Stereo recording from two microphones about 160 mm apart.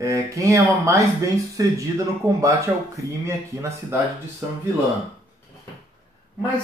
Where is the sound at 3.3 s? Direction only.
15° right (ahead or behind).